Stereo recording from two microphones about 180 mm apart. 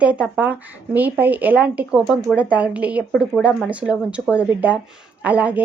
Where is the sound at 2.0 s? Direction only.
Centre (ahead or behind).